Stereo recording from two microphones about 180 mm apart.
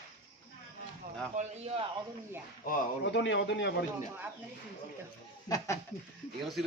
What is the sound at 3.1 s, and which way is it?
Speech, 80° left.